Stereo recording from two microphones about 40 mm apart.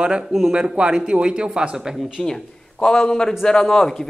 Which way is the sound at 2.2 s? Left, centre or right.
Centre.